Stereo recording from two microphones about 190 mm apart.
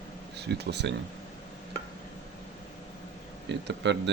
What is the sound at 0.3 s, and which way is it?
Speech, 60° right (ahead or behind).